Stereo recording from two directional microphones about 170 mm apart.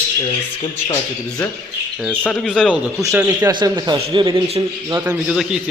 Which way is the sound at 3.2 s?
20° right (ahead or behind).